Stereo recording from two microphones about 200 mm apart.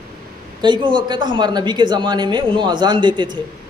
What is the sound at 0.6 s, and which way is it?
Speech, 25° right (ahead or behind).